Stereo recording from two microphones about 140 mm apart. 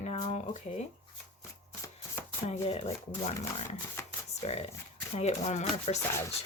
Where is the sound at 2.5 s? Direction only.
50° left (ahead or behind).